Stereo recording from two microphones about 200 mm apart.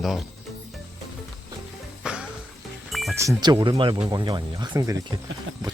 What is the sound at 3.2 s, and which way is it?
Speech, 20° right (ahead or behind).